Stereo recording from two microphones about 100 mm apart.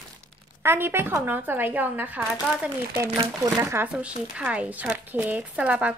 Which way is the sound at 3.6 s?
25° right (ahead or behind).